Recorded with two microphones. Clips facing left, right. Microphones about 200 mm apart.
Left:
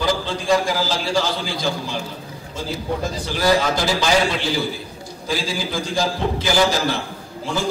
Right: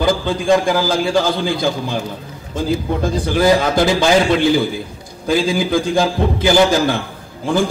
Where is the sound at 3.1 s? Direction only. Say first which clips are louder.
Right 9 dB; 55° right (ahead or behind).